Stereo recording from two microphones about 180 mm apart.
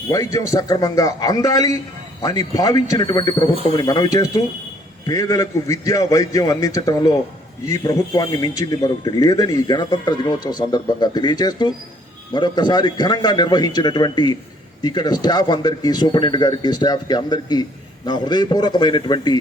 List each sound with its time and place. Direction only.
0.1 s speech: 20° left (ahead or behind)